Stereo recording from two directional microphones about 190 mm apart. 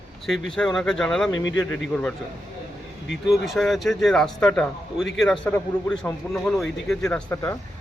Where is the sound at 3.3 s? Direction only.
Centre (ahead or behind).